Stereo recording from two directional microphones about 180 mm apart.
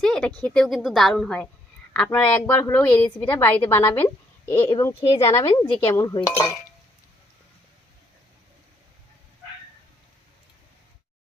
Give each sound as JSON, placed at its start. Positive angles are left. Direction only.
{"t": 0.0, "sound": "a woman's voice", "side_deg": 5}